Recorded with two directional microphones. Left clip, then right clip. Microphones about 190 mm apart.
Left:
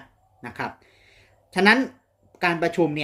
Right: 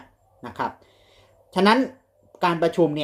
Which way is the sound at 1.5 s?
5° left (ahead or behind).